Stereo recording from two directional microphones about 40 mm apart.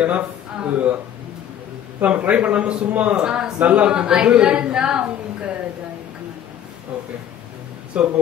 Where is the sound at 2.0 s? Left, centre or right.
Right.